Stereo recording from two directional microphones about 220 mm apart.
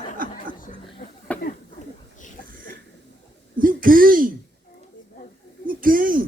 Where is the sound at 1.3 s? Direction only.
5° left (ahead or behind).